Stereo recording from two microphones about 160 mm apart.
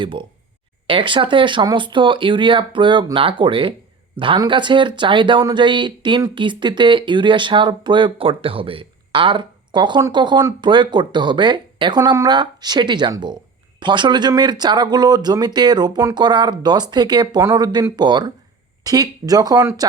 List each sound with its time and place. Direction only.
0.0 s speech: 30° right (ahead or behind)